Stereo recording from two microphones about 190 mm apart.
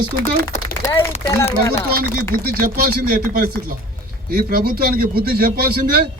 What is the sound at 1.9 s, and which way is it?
A man's voice, 50° right (ahead or behind).